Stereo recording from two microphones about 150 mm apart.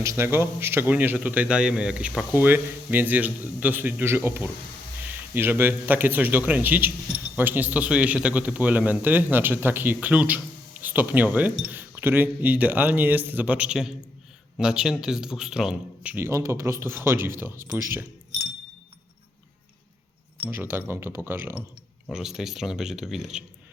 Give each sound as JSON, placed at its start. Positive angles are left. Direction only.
{"t": 0.0, "sound": "a man's voice", "side_deg": -20}
{"t": 17.8, "sound": "keys jangling", "side_deg": -15}
{"t": 20.5, "sound": "a man's voice", "side_deg": -15}
{"t": 22.1, "sound": "speech", "side_deg": -5}